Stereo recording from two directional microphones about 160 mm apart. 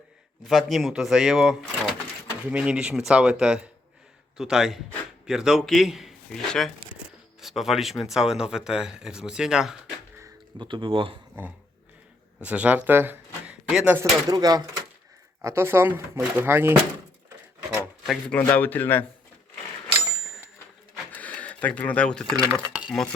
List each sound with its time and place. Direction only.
0.4 s a man's voice: centre (ahead or behind)
10.6 s speech: 30° right (ahead or behind)
12.4 s speech: 10° right (ahead or behind)
17.7 s rub: centre (ahead or behind)
18.3 s speech: 10° left (ahead or behind)
21.1 s a sound: 10° left (ahead or behind)
22.7 s dishes: 5° right (ahead or behind)